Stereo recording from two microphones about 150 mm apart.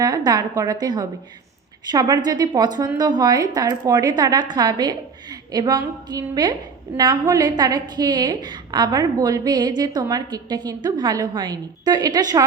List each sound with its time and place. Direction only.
0.0 s a woman's voice: 25° right (ahead or behind)